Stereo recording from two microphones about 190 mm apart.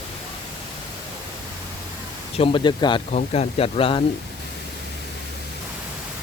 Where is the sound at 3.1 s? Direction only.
35° left (ahead or behind).